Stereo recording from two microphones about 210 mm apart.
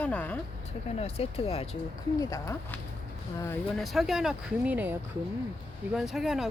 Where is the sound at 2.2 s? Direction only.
15° left (ahead or behind).